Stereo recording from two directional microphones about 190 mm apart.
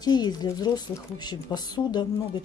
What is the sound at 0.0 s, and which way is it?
Speech, 20° left (ahead or behind).